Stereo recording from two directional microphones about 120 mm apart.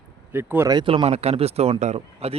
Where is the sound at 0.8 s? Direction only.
50° right (ahead or behind).